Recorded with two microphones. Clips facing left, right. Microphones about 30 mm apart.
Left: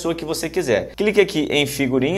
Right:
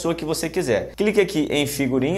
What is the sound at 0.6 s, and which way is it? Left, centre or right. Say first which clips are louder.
Speech: left 2 dB; left.